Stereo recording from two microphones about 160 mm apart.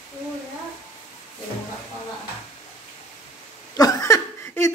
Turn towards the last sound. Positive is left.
turn(degrees=15)  # may be behind; listen again after turning